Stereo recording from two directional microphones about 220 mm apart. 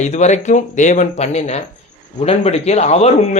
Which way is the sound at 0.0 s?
30° left (ahead or behind).